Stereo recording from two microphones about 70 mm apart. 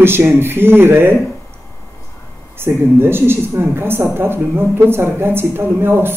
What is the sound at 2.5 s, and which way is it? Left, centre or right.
Speech, right.